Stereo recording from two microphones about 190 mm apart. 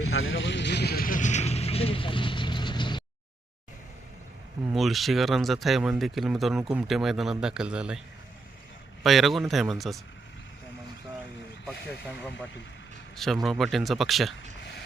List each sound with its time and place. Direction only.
0.0 s vehicle: 90° left; by 3.0 s 25° left (ahead or behind)
4.7 s speech: centre (ahead or behind)
9.0 s speech: centre (ahead or behind)
13.1 s speech: centre (ahead or behind)